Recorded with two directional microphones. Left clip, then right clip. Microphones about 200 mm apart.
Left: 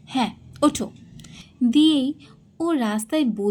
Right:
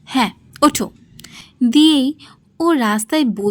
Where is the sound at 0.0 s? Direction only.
50° right (ahead or behind).